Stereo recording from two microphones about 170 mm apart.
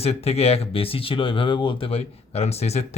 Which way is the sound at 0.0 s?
35° left (ahead or behind).